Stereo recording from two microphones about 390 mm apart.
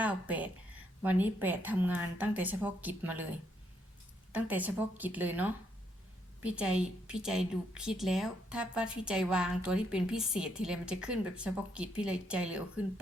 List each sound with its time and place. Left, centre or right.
0.0 s a woman's voice: centre
4.3 s a woman's voice: centre